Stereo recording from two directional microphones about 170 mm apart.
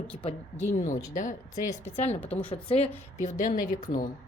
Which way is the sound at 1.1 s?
50° left (ahead or behind).